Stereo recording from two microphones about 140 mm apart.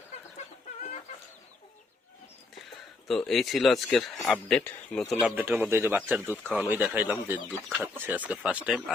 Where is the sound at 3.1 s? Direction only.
Centre (ahead or behind).